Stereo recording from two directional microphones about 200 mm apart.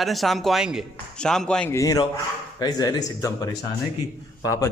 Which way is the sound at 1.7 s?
15° left (ahead or behind).